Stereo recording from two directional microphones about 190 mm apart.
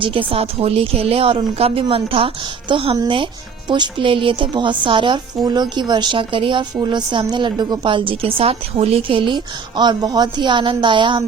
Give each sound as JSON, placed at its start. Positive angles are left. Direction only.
{"t": 0.0, "sound": "a woman's voice", "side_deg": -25}